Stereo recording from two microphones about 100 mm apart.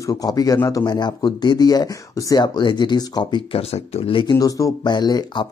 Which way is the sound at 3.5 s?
85° left.